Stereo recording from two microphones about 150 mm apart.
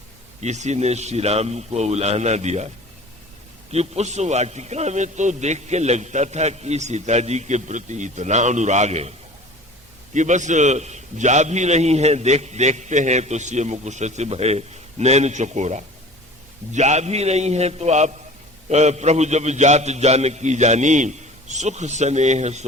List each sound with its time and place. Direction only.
0.4 s a man's voice: 50° right (ahead or behind)
3.7 s a man's voice: 45° right (ahead or behind)
10.2 s a man's voice: 55° right (ahead or behind)